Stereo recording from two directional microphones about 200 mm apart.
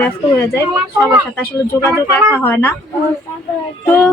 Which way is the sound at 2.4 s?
10° left (ahead or behind).